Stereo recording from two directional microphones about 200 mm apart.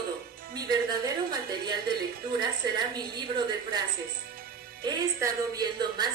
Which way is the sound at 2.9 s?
20° right (ahead or behind).